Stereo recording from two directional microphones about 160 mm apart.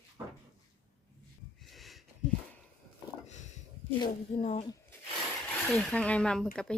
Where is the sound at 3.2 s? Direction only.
45° left (ahead or behind).